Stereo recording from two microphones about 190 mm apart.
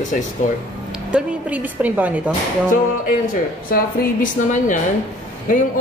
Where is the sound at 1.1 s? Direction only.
10° right (ahead or behind).